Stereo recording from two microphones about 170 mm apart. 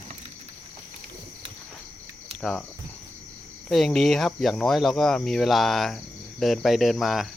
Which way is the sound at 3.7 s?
Centre (ahead or behind).